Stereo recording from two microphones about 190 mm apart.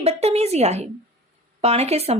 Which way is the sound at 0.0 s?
35° right (ahead or behind).